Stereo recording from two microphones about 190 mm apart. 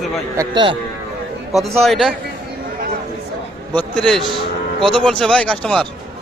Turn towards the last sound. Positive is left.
turn(degrees=5)  # may be behind; listen again after turning